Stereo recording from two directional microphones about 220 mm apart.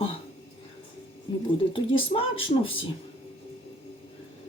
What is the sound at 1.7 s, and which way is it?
Speech, 25° left (ahead or behind).